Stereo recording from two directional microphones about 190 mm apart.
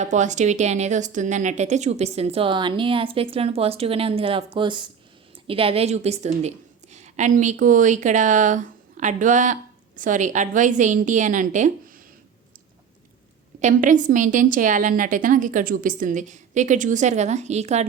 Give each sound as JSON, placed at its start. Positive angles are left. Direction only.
{"t": 0.0, "sound": "speech", "side_deg": -40}
{"t": 13.6, "sound": "a woman's voice", "side_deg": -40}